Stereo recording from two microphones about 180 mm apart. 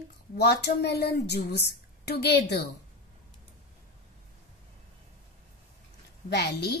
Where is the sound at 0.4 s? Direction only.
70° left (ahead or behind).